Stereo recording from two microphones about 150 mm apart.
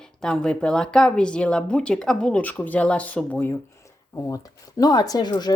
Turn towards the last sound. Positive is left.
turn(degrees=30)  # may be behind; listen again after turning